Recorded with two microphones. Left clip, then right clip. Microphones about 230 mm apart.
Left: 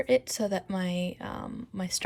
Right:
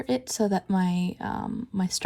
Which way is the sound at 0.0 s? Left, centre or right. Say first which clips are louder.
Left 1 dB; centre.